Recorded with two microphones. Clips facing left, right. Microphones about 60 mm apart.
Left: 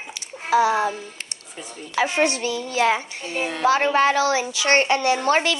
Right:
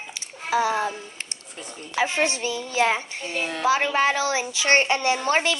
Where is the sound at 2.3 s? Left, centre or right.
Right.